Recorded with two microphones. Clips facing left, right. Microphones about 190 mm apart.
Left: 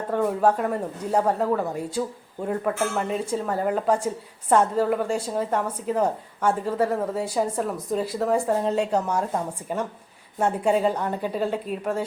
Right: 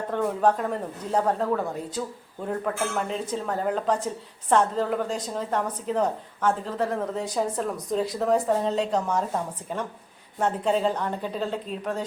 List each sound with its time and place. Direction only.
0.1 s speech: 5° left (ahead or behind)